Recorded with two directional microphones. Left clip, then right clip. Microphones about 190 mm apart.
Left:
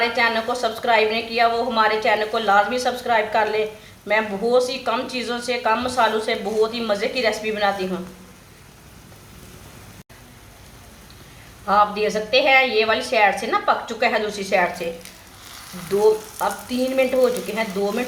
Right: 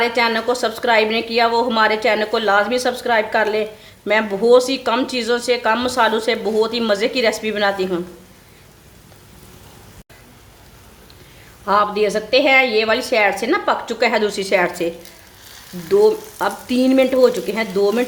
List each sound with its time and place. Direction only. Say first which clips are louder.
0.0 s a woman's voice: right 2 dB; 55° right (ahead or behind)
11.6 s a woman's voice: right 2 dB; 50° right (ahead or behind)
16.4 s a woman's voice: right 4 dB; 55° right (ahead or behind)